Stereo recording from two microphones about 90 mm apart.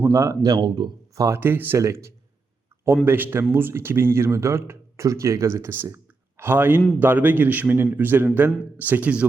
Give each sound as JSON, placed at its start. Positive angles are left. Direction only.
{"t": 0.0, "sound": "speech", "side_deg": -30}
{"t": 0.4, "sound": "speech", "side_deg": -50}
{"t": 1.1, "sound": "speech", "side_deg": -35}
{"t": 1.4, "sound": "speech", "side_deg": -25}
{"t": 1.8, "sound": "speech", "side_deg": -35}